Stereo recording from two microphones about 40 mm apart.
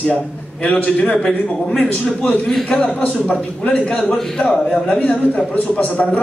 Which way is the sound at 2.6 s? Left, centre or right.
Left.